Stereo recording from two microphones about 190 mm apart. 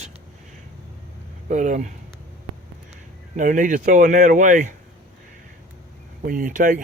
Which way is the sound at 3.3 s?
40° right (ahead or behind).